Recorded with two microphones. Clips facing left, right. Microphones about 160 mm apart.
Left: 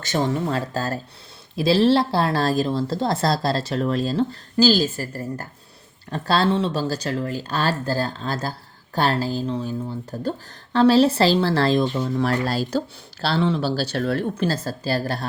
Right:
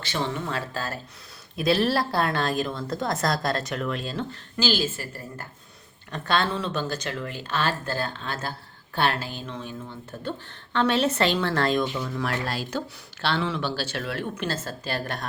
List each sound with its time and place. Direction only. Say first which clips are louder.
0.0 s a woman's voice: left 6 dB; 45° left (ahead or behind)
1.5 s a woman's voice: left 6 dB; 30° left (ahead or behind)